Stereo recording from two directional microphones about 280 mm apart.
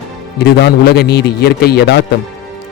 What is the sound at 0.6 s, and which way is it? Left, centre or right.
A man's voice, left.